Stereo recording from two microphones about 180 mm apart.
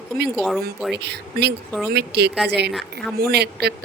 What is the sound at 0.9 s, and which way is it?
Speech, 65° right (ahead or behind).